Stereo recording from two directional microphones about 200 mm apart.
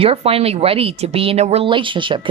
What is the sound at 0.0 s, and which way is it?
A woman's voice, 30° right (ahead or behind).